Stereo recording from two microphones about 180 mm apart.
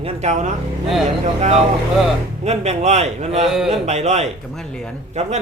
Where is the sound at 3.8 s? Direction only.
35° right (ahead or behind).